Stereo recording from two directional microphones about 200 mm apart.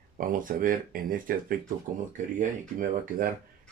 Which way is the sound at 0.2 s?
45° right (ahead or behind).